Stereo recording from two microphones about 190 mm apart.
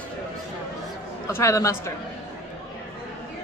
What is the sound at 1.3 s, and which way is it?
Speech, 15° left (ahead or behind).